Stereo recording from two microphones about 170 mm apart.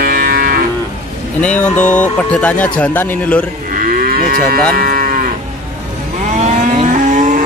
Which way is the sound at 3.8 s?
55° right (ahead or behind).